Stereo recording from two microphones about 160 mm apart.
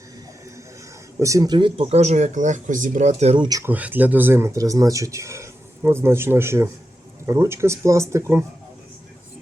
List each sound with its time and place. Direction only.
1.2 s speech: 20° right (ahead or behind)
3.6 s speech: 10° right (ahead or behind)